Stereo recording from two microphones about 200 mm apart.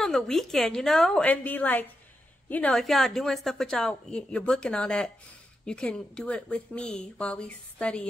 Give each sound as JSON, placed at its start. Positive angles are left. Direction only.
{"t": 0.0, "sound": "a woman's voice", "side_deg": 0}